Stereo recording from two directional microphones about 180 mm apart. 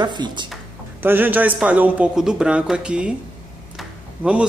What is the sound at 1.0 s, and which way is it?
A man's voice, 10° right (ahead or behind).